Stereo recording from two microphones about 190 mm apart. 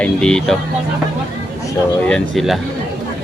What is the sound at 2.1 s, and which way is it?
Speech, centre (ahead or behind).